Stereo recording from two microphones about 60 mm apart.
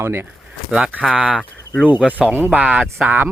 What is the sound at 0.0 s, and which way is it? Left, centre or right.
Speech, right.